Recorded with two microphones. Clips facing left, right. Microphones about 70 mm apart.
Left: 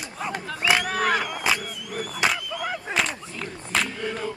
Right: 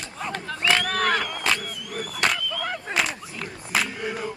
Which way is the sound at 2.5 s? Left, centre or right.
Centre.